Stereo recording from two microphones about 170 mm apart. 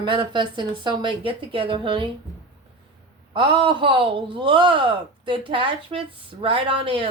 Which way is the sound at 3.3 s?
30° right (ahead or behind).